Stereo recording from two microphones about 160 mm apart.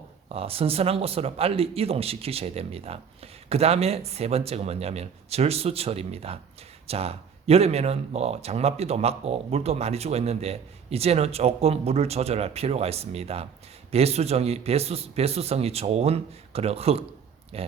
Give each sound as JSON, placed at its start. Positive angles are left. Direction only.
{"t": 0.3, "sound": "speech", "side_deg": -35}